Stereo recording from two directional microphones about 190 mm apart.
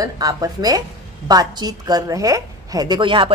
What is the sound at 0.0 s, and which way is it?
A woman's voice, 20° right (ahead or behind).